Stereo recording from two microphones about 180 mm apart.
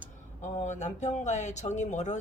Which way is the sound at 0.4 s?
40° left (ahead or behind).